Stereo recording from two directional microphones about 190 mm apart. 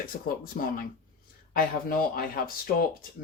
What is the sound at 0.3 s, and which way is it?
Speech, 50° left (ahead or behind).